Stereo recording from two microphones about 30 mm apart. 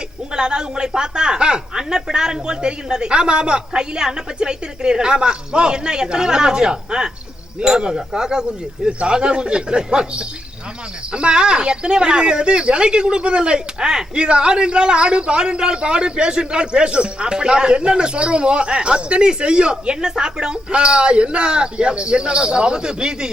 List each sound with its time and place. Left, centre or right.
0.3 s speech: right
8.9 s a man's voice: right